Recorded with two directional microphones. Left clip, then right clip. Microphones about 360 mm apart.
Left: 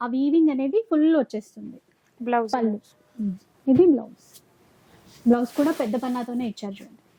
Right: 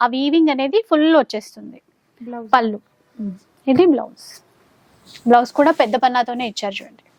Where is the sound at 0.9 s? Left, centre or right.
Right.